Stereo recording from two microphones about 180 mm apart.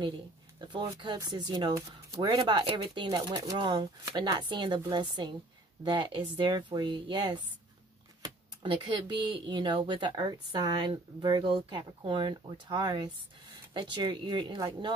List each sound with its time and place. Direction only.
0.6 s speech: 25° right (ahead or behind)